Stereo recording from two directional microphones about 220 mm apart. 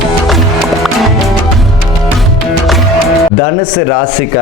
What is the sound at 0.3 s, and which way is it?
Music, centre (ahead or behind).